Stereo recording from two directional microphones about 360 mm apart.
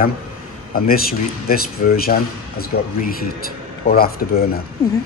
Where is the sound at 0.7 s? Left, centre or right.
Left.